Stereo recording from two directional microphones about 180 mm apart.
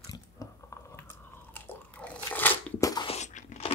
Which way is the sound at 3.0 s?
40° left (ahead or behind).